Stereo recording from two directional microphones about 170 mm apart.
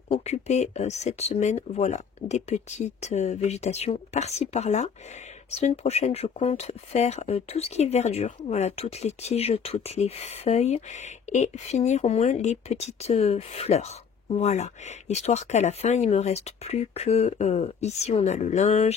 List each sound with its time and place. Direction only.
0.1 s speech: 40° left (ahead or behind)